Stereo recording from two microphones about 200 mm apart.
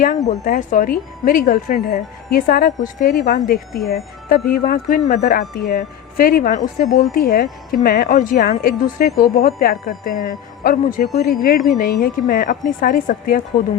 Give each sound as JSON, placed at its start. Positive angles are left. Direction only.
{"t": 0.3, "sound": "speech", "side_deg": 40}